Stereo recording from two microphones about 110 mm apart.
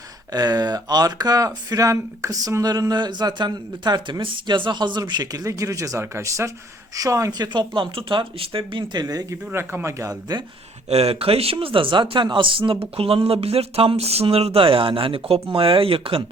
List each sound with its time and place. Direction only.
0.3 s speech: 35° right (ahead or behind); by 8.8 s 55° right (ahead or behind)
8.9 s speech: 35° right (ahead or behind)
9.5 s speech: 20° right (ahead or behind)
10.8 s speech: 65° right (ahead or behind)
11.6 s speech: 50° right (ahead or behind)